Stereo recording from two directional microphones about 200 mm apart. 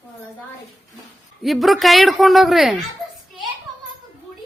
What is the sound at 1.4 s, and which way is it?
A woman's voice, centre (ahead or behind).